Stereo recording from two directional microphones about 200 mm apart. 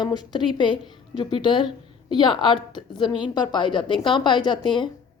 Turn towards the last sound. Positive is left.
turn(degrees=25)  # may be behind; listen again after turning